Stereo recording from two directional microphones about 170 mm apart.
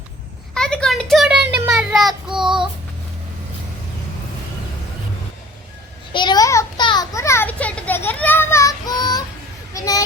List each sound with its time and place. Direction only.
0.5 s child singing: 5° left (ahead or behind)
6.1 s a sound: 25° left (ahead or behind)
6.8 s children playing: 25° left (ahead or behind)
9.7 s speech: 20° left (ahead or behind)